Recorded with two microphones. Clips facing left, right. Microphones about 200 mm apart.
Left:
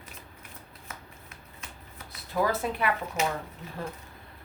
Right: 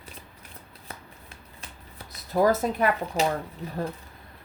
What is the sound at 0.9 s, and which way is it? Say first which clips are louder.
Shuffling cards: right 3 dB; 35° right (ahead or behind).